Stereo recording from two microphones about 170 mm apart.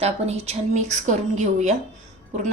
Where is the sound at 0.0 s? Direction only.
35° right (ahead or behind).